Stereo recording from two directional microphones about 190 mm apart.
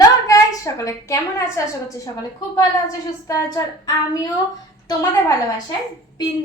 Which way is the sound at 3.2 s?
20° left (ahead or behind).